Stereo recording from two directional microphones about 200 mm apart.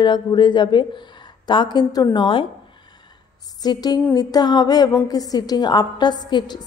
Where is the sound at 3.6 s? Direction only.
20° left (ahead or behind).